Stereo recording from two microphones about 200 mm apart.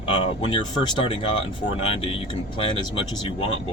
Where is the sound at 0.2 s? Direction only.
25° left (ahead or behind).